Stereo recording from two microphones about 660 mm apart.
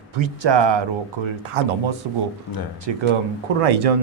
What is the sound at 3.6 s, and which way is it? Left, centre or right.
Speech, right.